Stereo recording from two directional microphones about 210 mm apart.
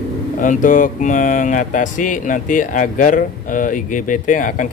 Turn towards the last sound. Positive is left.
turn(degrees=40)  # may be behind; listen again after turning